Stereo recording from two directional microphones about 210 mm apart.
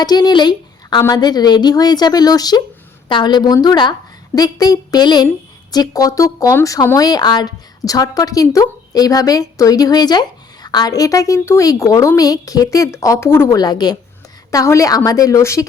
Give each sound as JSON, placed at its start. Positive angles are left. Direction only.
{"t": 0.0, "sound": "a woman's voice", "side_deg": 20}